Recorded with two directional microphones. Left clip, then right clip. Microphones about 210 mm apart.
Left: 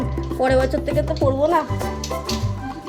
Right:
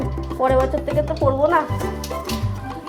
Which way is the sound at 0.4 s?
25° left (ahead or behind).